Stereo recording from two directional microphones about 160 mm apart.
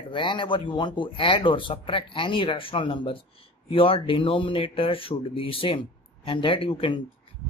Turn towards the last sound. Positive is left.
turn(degrees=35)  # may be behind; listen again after turning